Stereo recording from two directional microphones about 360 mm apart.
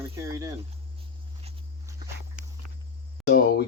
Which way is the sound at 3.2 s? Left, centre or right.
Left.